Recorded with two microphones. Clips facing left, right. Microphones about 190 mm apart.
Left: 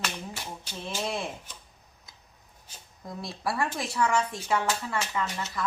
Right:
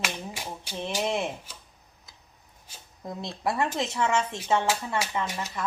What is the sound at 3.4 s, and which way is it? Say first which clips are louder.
Speech: right 3 dB; 20° right (ahead or behind).